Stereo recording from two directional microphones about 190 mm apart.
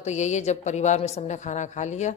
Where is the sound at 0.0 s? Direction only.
35° left (ahead or behind).